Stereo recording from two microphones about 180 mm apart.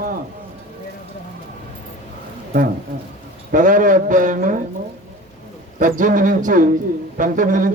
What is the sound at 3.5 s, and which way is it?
A man's voice, 45° right (ahead or behind).